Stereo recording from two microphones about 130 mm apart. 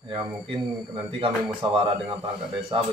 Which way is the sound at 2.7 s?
40° right (ahead or behind).